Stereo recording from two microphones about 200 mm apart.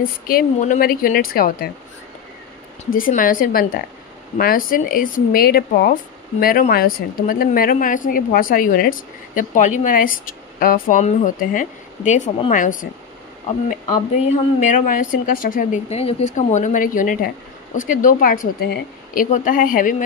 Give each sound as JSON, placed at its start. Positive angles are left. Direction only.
{"t": 0.0, "sound": "a woman's voice", "side_deg": 45}
{"t": 2.9, "sound": "a woman's voice", "side_deg": 45}
{"t": 14.3, "sound": "a woman's voice", "side_deg": 40}
{"t": 15.9, "sound": "a woman's voice", "side_deg": 30}